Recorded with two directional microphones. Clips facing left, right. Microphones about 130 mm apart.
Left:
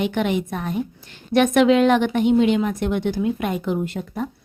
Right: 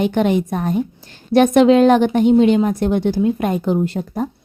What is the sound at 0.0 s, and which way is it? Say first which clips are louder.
A woman's voice: right 5 dB; 40° right (ahead or behind).